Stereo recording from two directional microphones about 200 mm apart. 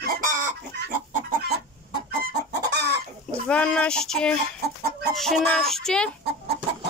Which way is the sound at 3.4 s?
5° left (ahead or behind).